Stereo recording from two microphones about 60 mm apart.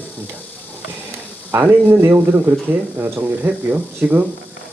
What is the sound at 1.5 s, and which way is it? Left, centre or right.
Speech, right.